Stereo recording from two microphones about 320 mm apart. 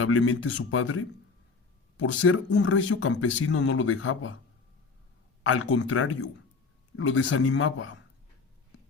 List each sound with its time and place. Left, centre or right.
0.0 s speech: left
2.0 s speech: left
5.4 s speech: left